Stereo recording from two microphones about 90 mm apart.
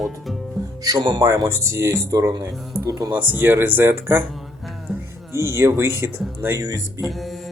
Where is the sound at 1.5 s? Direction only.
30° right (ahead or behind).